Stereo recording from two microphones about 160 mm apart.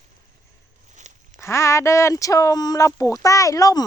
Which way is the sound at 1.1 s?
45° right (ahead or behind).